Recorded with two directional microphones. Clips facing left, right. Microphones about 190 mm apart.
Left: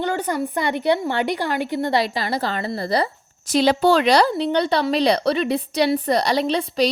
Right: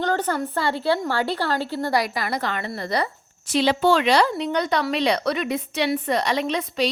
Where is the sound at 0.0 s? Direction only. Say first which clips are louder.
Left 1 dB; 10° left (ahead or behind).